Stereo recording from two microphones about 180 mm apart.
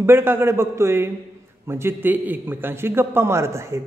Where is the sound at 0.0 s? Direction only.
15° right (ahead or behind).